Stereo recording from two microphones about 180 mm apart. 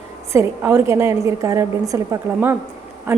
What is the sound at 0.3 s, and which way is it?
A woman's voice, 15° right (ahead or behind).